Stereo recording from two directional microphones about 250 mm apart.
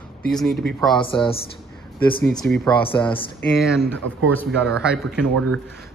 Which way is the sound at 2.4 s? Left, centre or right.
Centre.